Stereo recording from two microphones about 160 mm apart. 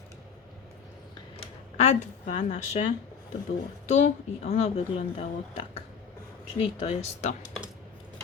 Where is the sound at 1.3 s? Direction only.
45° left (ahead or behind).